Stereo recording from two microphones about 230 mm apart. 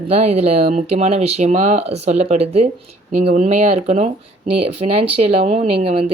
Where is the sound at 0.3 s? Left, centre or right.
Right.